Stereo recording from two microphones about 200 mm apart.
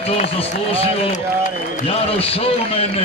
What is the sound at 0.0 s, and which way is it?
A man's voice, 30° left (ahead or behind).